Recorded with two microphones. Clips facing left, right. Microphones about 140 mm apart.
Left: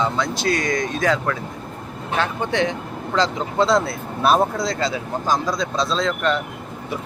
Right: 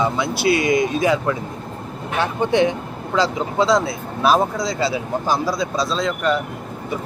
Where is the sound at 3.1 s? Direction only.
5° right (ahead or behind).